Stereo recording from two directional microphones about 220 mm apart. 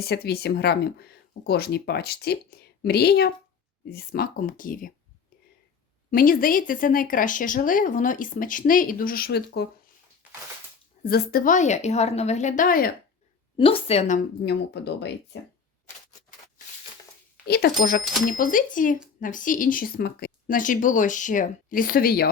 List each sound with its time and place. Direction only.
0.0 s speech: 45° left (ahead or behind)
6.1 s speech: 40° left (ahead or behind)
11.0 s speech: 45° left (ahead or behind)
13.6 s a woman's voice: 25° left (ahead or behind)
14.4 s speech: 50° left (ahead or behind)
17.4 s speech: 45° left (ahead or behind)